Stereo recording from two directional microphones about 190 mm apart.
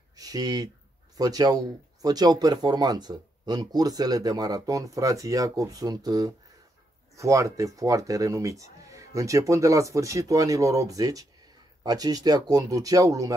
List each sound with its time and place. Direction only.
0.2 s speech: 20° right (ahead or behind)